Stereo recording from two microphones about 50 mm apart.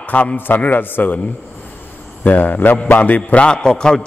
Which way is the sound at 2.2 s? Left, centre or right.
Left.